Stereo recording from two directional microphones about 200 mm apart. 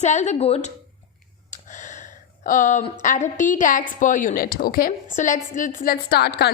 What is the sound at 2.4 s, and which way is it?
A woman's voice, 40° left (ahead or behind).